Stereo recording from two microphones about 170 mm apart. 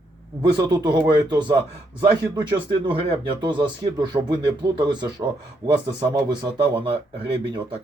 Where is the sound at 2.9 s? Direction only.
30° right (ahead or behind).